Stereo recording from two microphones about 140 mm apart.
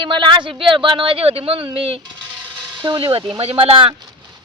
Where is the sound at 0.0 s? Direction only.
35° right (ahead or behind).